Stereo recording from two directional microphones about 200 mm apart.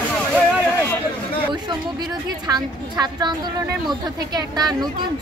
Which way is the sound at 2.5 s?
20° right (ahead or behind).